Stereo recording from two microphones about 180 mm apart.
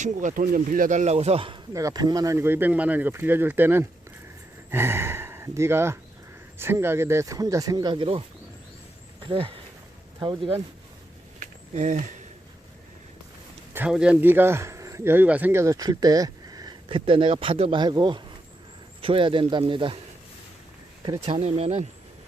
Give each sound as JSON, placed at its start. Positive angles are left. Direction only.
{"t": 0.0, "sound": "speech", "side_deg": -45}
{"t": 9.2, "sound": "speech", "side_deg": -30}
{"t": 11.3, "sound": "a sound", "side_deg": -40}
{"t": 13.7, "sound": "speech", "side_deg": -5}
{"t": 21.2, "sound": "speech", "side_deg": -35}